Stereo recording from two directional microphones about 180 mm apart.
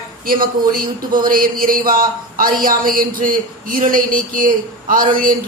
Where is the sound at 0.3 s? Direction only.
55° right (ahead or behind).